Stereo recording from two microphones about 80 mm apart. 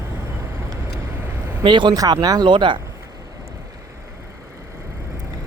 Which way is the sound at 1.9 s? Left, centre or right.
Right.